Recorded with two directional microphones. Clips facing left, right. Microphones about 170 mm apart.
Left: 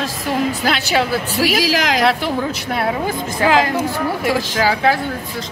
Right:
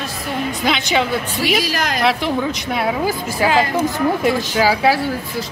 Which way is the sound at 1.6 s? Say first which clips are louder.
Left 4 dB; 90° left.